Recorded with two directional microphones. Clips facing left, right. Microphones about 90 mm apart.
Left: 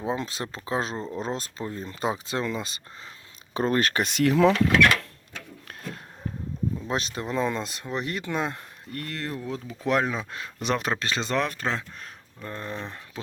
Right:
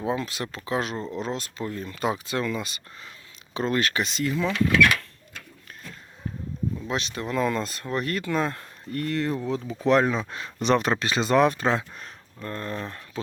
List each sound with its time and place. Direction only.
0.0 s speech: 30° left (ahead or behind)
3.5 s speech: 40° left (ahead or behind); by 4.5 s 75° left (ahead or behind)
6.8 s speech: 35° left (ahead or behind); by 8.6 s 15° left (ahead or behind)
8.9 s speech: centre (ahead or behind); by 11.9 s 15° right (ahead or behind)
12.4 s speech: 10° left (ahead or behind)